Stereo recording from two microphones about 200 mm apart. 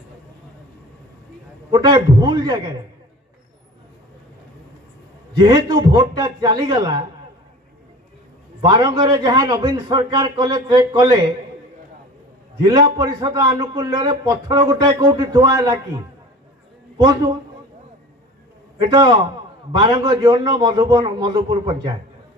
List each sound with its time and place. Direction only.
1.7 s a man's voice: 20° right (ahead or behind)
5.4 s a man's voice: 20° right (ahead or behind)
8.5 s a man's voice: 20° right (ahead or behind)
12.6 s a man's voice: 20° right (ahead or behind)
18.8 s a man's voice: 25° right (ahead or behind)